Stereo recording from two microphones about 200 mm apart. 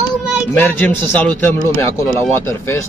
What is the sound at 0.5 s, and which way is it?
Speech, 10° left (ahead or behind).